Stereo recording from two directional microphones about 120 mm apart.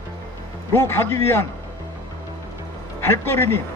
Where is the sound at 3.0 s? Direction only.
20° left (ahead or behind).